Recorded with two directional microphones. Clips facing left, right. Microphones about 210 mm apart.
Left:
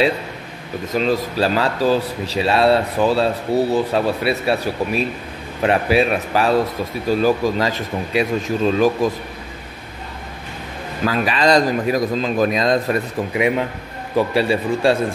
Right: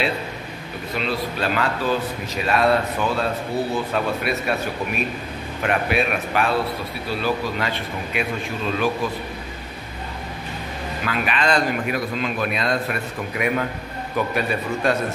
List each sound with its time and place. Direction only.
0.9 s speech: 40° left (ahead or behind)
11.1 s speech: 35° left (ahead or behind)
13.3 s a man's voice: 25° left (ahead or behind)